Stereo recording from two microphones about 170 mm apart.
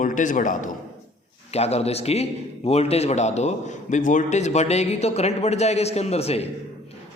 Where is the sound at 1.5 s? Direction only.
40° left (ahead or behind).